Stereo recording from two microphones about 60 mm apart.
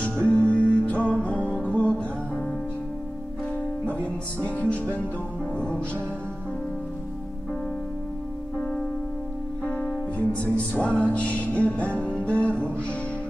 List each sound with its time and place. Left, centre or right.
0.0 s music: left
3.8 s music: left
9.7 s music: centre